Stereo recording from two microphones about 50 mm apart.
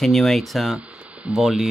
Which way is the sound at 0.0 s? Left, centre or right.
Centre.